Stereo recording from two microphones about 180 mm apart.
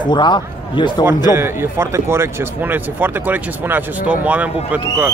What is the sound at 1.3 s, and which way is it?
Speech, 15° right (ahead or behind).